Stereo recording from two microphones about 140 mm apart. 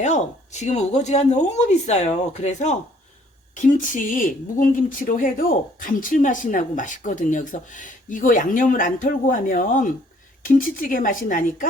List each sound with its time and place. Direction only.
0.0 s speech: 55° left (ahead or behind); by 11.7 s 75° left (ahead or behind)